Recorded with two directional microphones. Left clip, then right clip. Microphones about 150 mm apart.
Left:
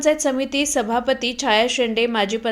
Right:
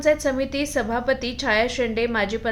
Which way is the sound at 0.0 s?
20° left (ahead or behind).